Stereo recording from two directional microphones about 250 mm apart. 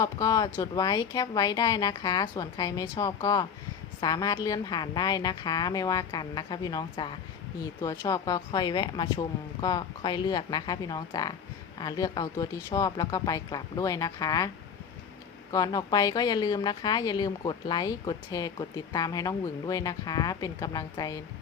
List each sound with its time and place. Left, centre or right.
0.0 s speech: centre
15.5 s speech: centre